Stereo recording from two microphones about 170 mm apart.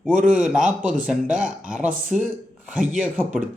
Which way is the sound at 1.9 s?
50° right (ahead or behind).